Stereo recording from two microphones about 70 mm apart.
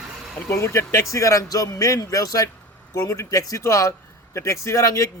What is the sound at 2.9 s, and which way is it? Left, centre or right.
A man's voice, left.